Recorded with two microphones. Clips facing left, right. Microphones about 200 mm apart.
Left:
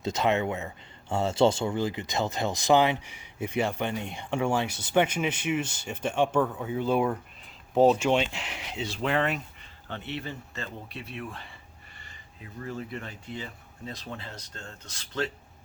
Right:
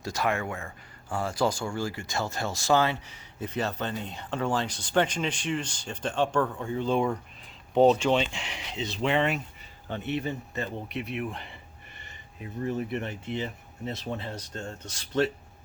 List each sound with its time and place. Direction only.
0.0 s speech: 20° left (ahead or behind); by 9.4 s centre (ahead or behind)
9.9 s speech: 15° right (ahead or behind)